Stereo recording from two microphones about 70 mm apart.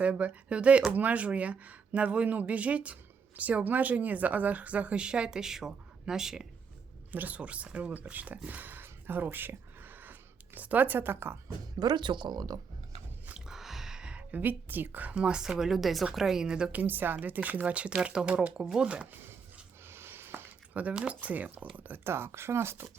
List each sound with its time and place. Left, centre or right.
0.0 s speech: centre
7.1 s speech: right
8.4 s a sound: right
11.8 s speech: right
13.5 s speech: centre
16.7 s speech: right
19.8 s a sound: right
20.7 s speech: centre; by 22.9 s right